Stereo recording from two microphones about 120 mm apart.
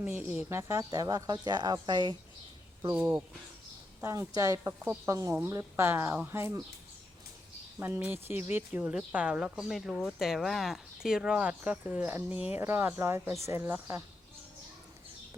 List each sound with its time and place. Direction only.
0.0 s speech: 15° right (ahead or behind); by 2.1 s 40° right (ahead or behind)
2.9 s speech: 20° right (ahead or behind)
7.8 s speech: 15° right (ahead or behind)